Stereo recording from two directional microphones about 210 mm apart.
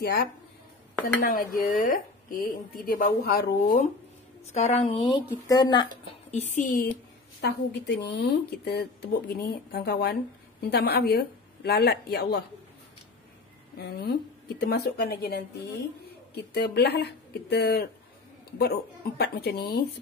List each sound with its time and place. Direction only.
0.0 s a woman's voice: 50° left (ahead or behind)
4.5 s speech: 30° left (ahead or behind)
5.5 s speech: 20° left (ahead or behind)
6.3 s speech: 35° left (ahead or behind)
7.4 s a woman's voice: 50° left (ahead or behind)
13.7 s a woman's voice: 50° left (ahead or behind)